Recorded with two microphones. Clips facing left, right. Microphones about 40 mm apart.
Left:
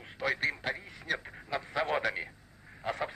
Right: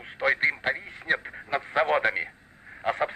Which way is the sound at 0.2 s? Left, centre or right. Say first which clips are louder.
Right 7 dB; right.